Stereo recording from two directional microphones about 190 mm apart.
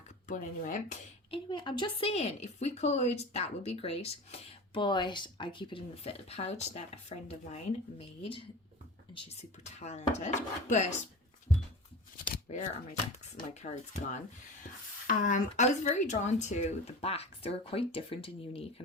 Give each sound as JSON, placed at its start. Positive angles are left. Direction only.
{"t": 0.3, "sound": "a woman's voice", "side_deg": 40}
{"t": 1.3, "sound": "a woman's voice", "side_deg": 25}
{"t": 12.5, "sound": "a woman's voice", "side_deg": 35}